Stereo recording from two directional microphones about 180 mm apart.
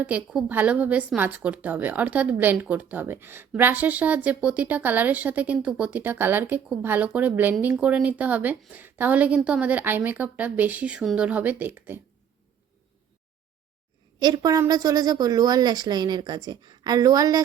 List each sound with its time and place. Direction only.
0.0 s a woman's voice: 5° right (ahead or behind)
14.2 s a woman's voice: 20° right (ahead or behind)